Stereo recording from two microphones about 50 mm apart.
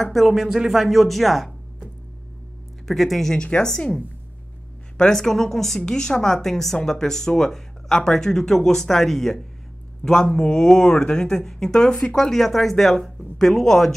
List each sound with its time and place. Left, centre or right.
0.1 s a woman's voice: centre
2.9 s a woman's voice: centre
3.4 s speech: left
3.7 s a woman's voice: centre
10.1 s a woman's voice: centre